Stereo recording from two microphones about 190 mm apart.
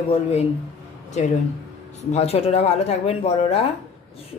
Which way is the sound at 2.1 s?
30° left (ahead or behind).